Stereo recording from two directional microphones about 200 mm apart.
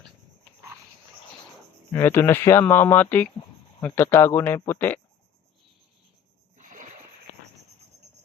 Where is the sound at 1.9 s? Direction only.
10° left (ahead or behind).